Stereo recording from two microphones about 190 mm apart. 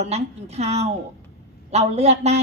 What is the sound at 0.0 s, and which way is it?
A woman's voice, 35° right (ahead or behind).